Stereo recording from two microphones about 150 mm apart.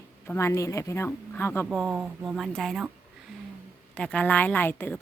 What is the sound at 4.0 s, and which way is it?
A woman's voice, 10° left (ahead or behind).